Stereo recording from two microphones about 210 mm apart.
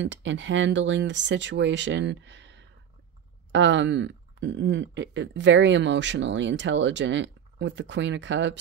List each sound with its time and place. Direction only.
0.0 s speech: 60° right (ahead or behind)